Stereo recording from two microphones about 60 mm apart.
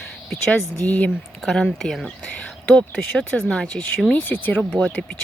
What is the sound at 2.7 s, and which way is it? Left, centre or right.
Speech, centre.